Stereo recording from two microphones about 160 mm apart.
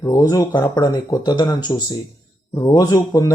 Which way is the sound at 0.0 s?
20° left (ahead or behind).